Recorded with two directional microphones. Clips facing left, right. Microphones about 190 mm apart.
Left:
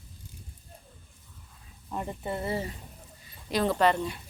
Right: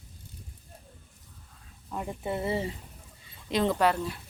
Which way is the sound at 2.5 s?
25° right (ahead or behind).